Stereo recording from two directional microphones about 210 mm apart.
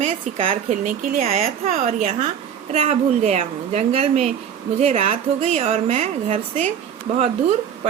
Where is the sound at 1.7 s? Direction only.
40° right (ahead or behind).